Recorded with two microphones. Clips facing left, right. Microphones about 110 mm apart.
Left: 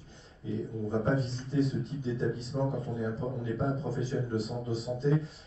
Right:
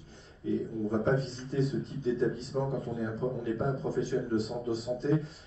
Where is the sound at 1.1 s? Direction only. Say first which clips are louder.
Left 1 dB; centre (ahead or behind).